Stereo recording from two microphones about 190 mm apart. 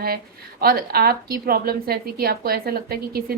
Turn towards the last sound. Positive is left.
turn(degrees=-55)  # may be behind; listen again after turning